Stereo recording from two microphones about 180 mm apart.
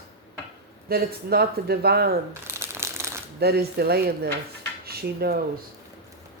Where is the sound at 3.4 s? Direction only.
60° right (ahead or behind).